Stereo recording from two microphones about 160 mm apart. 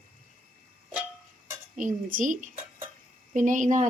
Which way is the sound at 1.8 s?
55° right (ahead or behind).